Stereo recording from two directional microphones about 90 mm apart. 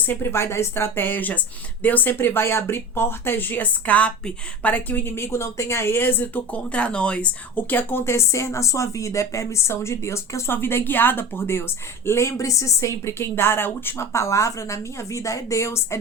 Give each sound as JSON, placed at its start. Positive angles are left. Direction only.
{"t": 0.1, "sound": "speech", "side_deg": 25}